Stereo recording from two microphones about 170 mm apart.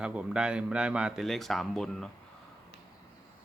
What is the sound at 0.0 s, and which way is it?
Speech, 5° right (ahead or behind).